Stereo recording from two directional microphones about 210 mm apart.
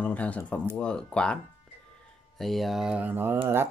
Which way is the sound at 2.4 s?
Centre (ahead or behind).